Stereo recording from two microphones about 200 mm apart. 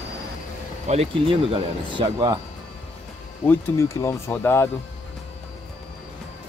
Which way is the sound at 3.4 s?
10° left (ahead or behind).